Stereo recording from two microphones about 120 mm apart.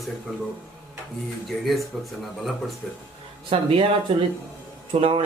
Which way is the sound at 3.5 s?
50° right (ahead or behind).